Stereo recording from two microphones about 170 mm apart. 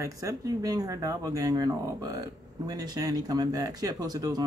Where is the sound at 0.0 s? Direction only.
20° right (ahead or behind).